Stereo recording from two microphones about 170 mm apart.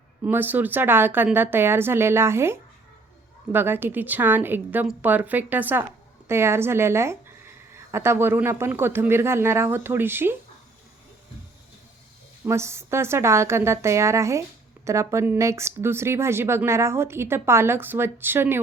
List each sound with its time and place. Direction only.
0.3 s a woman's voice: 10° right (ahead or behind)
12.5 s a woman's voice: 15° right (ahead or behind)